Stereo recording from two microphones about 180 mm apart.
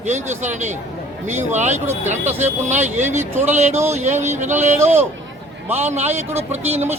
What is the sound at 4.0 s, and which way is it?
Speech, 40° right (ahead or behind).